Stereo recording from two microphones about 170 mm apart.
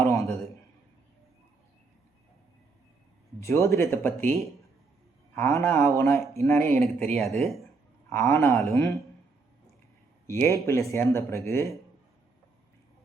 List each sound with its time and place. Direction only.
0.0 s a sound: 15° left (ahead or behind)
3.4 s speech: 15° left (ahead or behind)
7.1 s speech: centre (ahead or behind)
8.1 s speech: 15° left (ahead or behind)
10.2 s speech: 15° left (ahead or behind)